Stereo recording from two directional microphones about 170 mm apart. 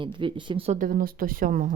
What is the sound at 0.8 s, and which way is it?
Speech, 55° right (ahead or behind).